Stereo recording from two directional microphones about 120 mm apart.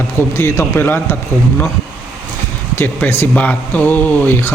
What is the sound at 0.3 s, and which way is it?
Speech, 20° left (ahead or behind).